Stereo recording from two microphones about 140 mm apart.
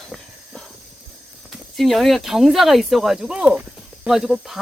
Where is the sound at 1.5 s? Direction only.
Centre (ahead or behind).